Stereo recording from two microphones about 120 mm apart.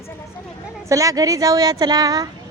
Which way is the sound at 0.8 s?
30° right (ahead or behind).